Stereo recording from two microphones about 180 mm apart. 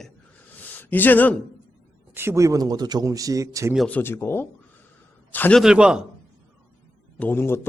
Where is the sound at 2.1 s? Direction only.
15° right (ahead or behind).